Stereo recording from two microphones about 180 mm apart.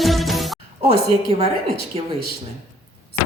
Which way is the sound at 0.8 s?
35° right (ahead or behind).